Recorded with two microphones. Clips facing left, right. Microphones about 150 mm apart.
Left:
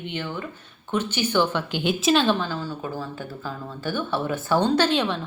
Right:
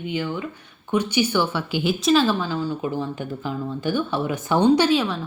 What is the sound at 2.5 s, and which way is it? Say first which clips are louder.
A woman's voice: right 5 dB; 15° right (ahead or behind).